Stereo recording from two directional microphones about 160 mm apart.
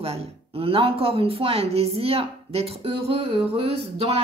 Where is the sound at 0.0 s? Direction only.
35° right (ahead or behind).